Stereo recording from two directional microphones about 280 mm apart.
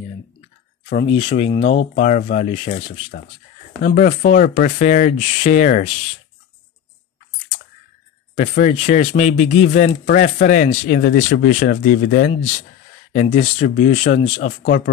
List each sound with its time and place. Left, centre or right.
1.0 s speech: left
8.4 s speech: left